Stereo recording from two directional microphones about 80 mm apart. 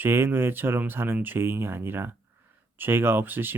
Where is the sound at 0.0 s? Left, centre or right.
Right.